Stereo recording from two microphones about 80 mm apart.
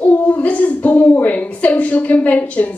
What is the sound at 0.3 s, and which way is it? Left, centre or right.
A woman's voice, left.